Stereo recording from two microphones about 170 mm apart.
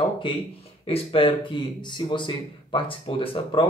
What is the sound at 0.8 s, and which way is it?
A man's voice, 35° left (ahead or behind).